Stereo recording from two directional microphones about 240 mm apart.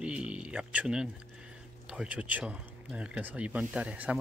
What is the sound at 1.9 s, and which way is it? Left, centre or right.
Speech, centre.